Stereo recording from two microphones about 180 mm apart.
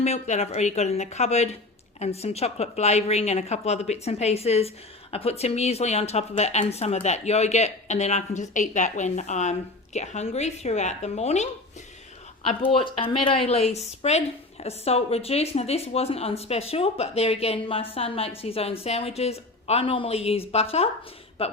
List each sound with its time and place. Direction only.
0.0 s speech: 35° left (ahead or behind)
12.7 s speech: 30° left (ahead or behind)